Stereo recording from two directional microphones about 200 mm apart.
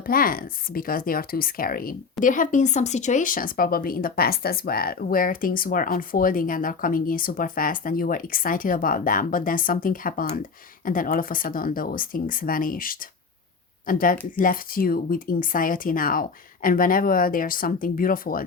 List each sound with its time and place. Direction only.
0.0 s speech: 45° left (ahead or behind)